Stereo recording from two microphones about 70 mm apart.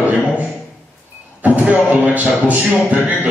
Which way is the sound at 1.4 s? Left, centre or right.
Right.